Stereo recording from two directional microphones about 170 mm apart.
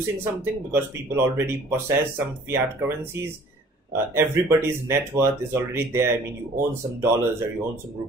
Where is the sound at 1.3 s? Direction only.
15° right (ahead or behind).